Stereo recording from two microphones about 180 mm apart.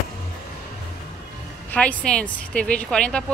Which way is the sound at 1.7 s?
5° left (ahead or behind).